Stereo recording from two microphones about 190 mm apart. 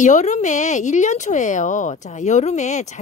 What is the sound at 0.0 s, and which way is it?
Speech, 40° left (ahead or behind).